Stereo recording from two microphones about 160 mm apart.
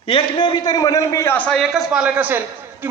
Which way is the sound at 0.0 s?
35° left (ahead or behind).